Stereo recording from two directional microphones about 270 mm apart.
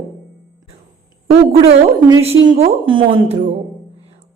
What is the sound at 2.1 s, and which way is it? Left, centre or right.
A woman's voice, centre.